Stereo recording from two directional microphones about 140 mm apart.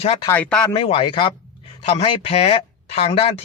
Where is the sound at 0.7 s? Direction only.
40° left (ahead or behind).